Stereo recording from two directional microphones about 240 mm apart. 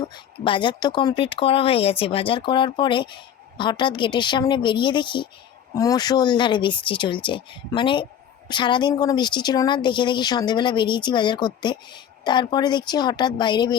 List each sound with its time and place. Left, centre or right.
0.1 s speech: centre